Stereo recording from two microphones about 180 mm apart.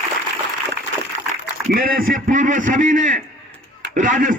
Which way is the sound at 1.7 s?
55° right (ahead or behind).